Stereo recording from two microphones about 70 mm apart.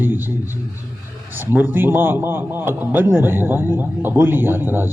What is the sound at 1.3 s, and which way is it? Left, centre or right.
A man's voice, right.